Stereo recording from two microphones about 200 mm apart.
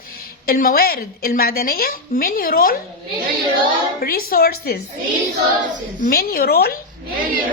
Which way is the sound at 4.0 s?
45° left (ahead or behind).